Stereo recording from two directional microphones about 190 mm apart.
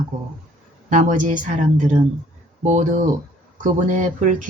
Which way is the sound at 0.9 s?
40° right (ahead or behind).